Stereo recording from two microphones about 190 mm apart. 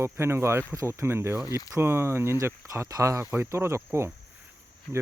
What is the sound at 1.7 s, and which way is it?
Speech, 10° right (ahead or behind).